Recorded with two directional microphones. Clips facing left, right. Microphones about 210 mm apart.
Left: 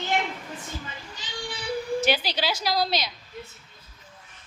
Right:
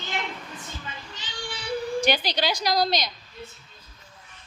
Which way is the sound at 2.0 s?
5° left (ahead or behind).